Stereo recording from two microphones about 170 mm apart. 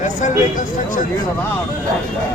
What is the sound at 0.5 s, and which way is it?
Speech, 50° left (ahead or behind).